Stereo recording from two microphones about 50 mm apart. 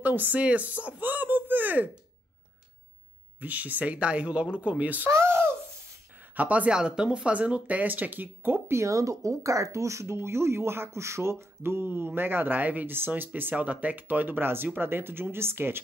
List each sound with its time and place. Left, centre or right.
0.0 s speech: right
3.3 s speech: right
5.1 s a sound: right
6.3 s speech: right
6.7 s speech: centre; by 8.7 s right
8.7 s speech: right
10.1 s speech: right